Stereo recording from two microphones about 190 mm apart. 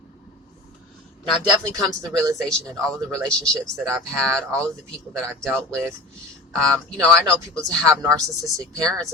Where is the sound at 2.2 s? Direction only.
Centre (ahead or behind).